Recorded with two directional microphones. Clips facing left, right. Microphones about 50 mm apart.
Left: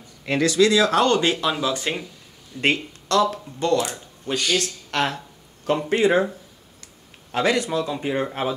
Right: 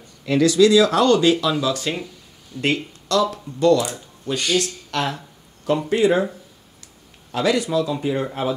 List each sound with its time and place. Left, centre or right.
0.2 s speech: left
2.6 s speech: left
3.9 s speech: centre
4.6 s speech: left
5.7 s speech: left
5.9 s speech: left
7.3 s speech: left
7.8 s speech: left